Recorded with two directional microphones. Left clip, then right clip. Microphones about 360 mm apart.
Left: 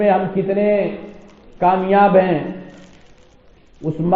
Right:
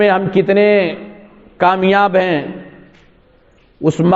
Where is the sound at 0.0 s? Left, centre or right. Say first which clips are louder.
Right 4 dB; right.